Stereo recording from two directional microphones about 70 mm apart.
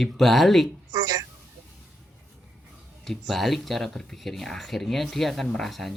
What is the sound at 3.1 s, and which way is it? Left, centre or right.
Speech, centre.